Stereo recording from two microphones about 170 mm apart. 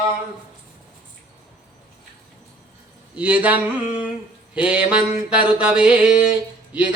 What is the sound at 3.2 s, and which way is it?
Mantra, 10° right (ahead or behind).